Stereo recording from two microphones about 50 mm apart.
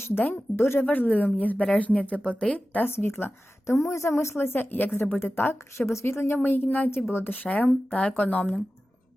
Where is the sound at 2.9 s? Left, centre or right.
Left.